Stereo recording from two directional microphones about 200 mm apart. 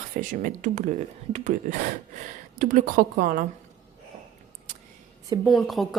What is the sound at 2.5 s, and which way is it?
Speech, 40° right (ahead or behind).